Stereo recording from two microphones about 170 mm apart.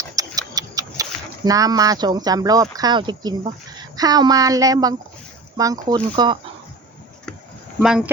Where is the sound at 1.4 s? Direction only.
20° right (ahead or behind).